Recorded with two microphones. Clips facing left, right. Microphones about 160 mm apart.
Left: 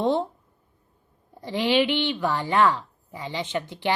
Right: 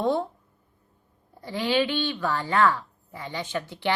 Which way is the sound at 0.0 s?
20° left (ahead or behind).